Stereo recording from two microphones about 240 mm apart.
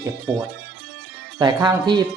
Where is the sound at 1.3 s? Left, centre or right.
Centre.